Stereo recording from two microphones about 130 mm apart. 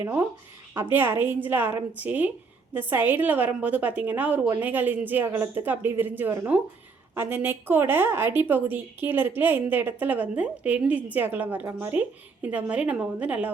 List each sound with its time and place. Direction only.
0.0 s a woman's voice: 15° right (ahead or behind)